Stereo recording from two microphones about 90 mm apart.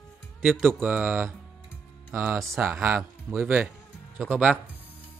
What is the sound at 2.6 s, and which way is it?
A man's voice, 25° right (ahead or behind).